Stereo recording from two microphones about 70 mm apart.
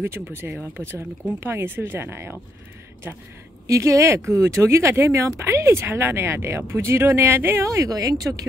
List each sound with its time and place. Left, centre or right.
0.0 s speech: right
3.6 s speech: right